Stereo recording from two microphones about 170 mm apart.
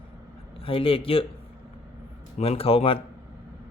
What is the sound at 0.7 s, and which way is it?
Speech, 30° left (ahead or behind).